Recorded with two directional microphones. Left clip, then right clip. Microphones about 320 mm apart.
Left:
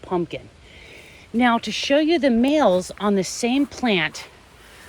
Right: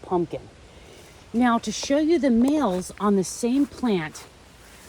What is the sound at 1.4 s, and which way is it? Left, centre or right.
Speech, centre.